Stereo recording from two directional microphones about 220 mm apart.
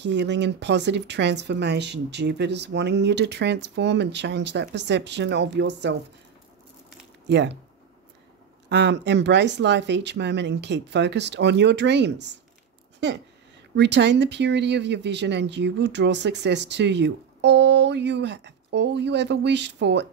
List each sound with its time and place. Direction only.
0.0 s speech: 50° right (ahead or behind)
7.2 s speech: 50° right (ahead or behind)
8.6 s speech: 50° right (ahead or behind)
13.7 s speech: 50° right (ahead or behind)